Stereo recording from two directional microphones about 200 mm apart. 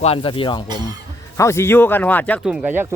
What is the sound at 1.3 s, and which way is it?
Speech, 15° left (ahead or behind).